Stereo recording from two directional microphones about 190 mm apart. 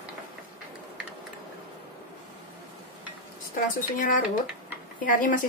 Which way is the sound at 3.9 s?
45° left (ahead or behind).